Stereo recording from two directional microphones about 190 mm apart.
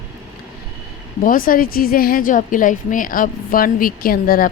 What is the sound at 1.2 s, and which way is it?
A woman's voice, 50° left (ahead or behind).